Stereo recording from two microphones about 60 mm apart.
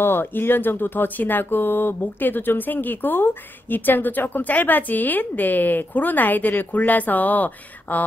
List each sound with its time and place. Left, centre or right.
0.0 s speech: left